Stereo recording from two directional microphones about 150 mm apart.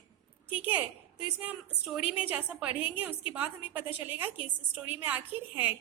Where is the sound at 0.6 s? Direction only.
10° right (ahead or behind).